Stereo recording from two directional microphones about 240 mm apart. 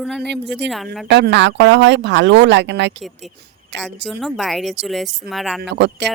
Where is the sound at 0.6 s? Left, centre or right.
Right.